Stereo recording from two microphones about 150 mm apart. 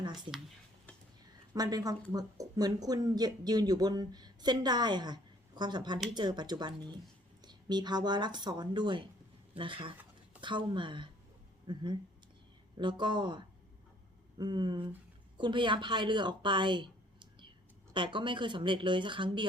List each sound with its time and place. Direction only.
1.5 s speech: 25° right (ahead or behind)